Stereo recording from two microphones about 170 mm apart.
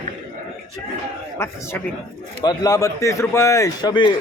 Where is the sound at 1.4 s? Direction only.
15° left (ahead or behind).